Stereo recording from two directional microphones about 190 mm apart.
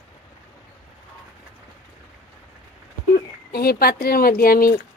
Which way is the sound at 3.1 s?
55° left (ahead or behind).